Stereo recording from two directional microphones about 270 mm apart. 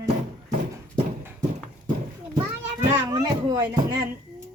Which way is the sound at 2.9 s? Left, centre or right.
Centre.